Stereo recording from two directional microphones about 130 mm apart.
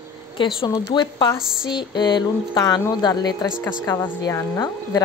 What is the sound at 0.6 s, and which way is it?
Speech, 35° left (ahead or behind).